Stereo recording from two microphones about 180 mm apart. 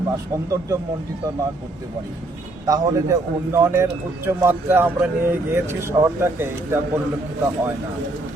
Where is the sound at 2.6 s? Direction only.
20° right (ahead or behind).